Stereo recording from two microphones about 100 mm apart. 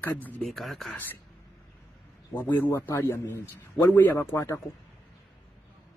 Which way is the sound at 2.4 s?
20° left (ahead or behind).